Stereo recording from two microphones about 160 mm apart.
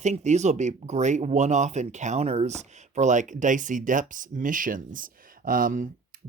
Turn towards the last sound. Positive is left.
turn(degrees=-60)  # may be behind; listen again after turning